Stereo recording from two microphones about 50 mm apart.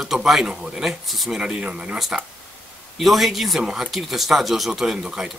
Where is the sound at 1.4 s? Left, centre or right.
Centre.